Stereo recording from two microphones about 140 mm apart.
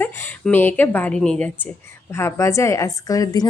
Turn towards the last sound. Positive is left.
turn(degrees=25)  # may be behind; listen again after turning